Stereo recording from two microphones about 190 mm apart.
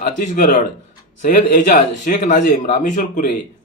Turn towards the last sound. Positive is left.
turn(degrees=45)  # may be behind; listen again after turning